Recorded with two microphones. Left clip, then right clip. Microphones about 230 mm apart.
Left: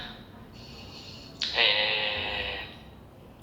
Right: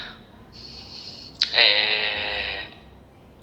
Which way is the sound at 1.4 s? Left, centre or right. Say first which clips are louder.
Right 6 dB; right.